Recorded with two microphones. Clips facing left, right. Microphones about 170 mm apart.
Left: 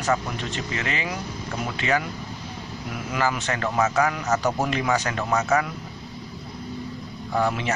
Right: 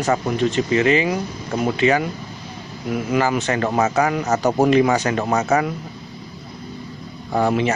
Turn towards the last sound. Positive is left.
turn(degrees=-30)  # may be behind; listen again after turning